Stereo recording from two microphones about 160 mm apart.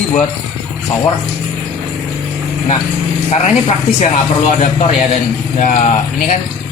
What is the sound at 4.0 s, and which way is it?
Speech, 45° left (ahead or behind).